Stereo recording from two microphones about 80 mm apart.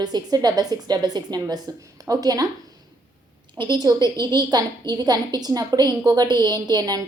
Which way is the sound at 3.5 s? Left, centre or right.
Right.